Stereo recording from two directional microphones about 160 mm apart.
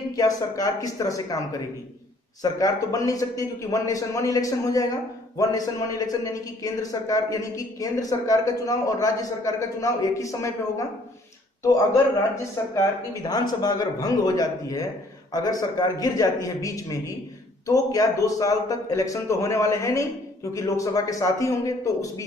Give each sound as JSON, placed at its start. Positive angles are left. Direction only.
{"t": 0.1, "sound": "a man's voice", "side_deg": 25}